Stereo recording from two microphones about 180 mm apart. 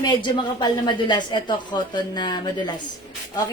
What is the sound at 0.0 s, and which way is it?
A woman's voice, 25° left (ahead or behind).